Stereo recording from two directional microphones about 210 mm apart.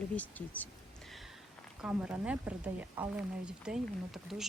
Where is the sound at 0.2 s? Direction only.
10° left (ahead or behind).